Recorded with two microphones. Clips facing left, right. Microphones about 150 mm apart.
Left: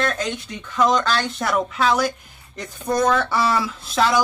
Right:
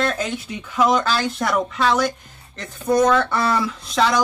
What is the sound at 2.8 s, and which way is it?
Speech, 10° right (ahead or behind).